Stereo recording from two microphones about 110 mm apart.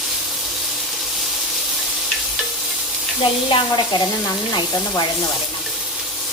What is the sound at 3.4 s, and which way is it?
Speech, 45° left (ahead or behind).